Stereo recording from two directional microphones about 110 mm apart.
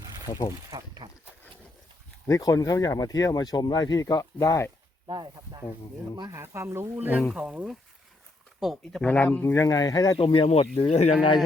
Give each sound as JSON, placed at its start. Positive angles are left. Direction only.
{"t": 0.3, "sound": "speech", "side_deg": 35}
{"t": 0.7, "sound": "goat", "side_deg": -30}
{"t": 2.2, "sound": "speech", "side_deg": 30}
{"t": 5.0, "sound": "speech", "side_deg": -40}
{"t": 6.3, "sound": "speech", "side_deg": -25}
{"t": 8.8, "sound": "speech", "side_deg": 5}
{"t": 10.2, "sound": "speech", "side_deg": 55}